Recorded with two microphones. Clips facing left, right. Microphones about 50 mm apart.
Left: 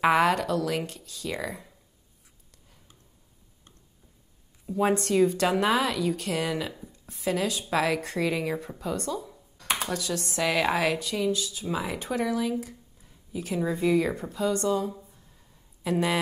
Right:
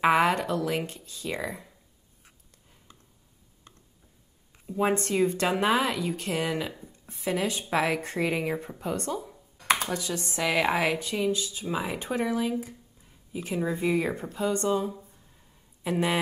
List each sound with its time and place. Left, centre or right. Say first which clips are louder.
0.0 s speech: even; centre
1.5 s speech: even; centre
4.6 s speech: left 1 dB; right
9.8 s speech: left 1 dB; centre